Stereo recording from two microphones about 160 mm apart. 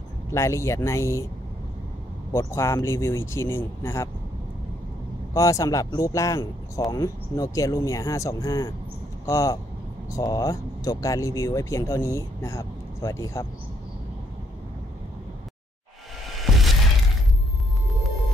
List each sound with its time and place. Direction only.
0.3 s speech: 15° left (ahead or behind)
2.3 s speech: 20° left (ahead or behind)
5.3 s speech: 20° left (ahead or behind)
16.5 s music: centre (ahead or behind)